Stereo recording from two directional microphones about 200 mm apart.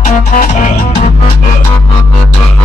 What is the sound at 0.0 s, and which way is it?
Music, 40° left (ahead or behind).